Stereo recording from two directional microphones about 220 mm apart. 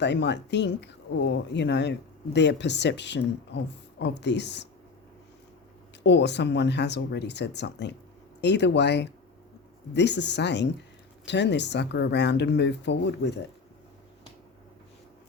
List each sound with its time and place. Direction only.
0.0 s speech: 50° left (ahead or behind)
6.0 s speech: 50° left (ahead or behind)